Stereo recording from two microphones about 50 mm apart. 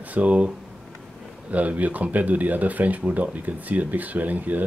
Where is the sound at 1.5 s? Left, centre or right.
Right.